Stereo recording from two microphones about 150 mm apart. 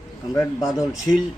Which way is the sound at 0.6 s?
5° right (ahead or behind).